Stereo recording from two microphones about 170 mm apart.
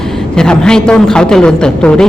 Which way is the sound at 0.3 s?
5° left (ahead or behind).